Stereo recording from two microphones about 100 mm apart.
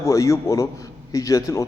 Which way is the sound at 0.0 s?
30° left (ahead or behind).